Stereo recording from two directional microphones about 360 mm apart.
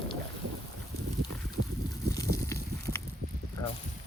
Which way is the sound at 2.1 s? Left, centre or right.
Centre.